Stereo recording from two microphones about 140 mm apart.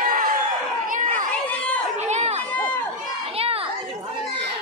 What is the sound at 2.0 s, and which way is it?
Chatter, 55° right (ahead or behind).